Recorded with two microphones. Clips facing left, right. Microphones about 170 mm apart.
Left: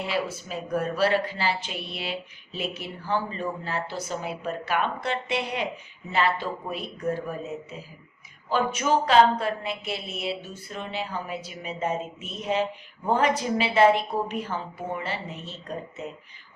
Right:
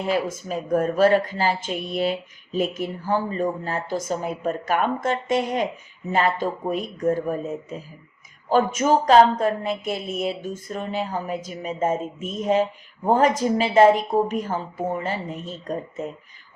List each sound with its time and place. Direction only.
0.0 s speech: 45° right (ahead or behind)